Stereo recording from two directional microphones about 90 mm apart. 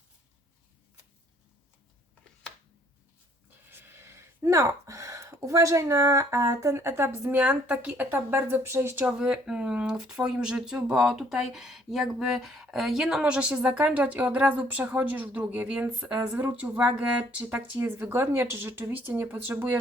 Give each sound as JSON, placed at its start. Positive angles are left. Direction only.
{"t": 3.7, "sound": "speech", "side_deg": -25}
{"t": 9.0, "sound": "speech", "side_deg": -10}